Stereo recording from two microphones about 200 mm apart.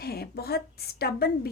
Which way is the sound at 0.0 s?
50° left (ahead or behind).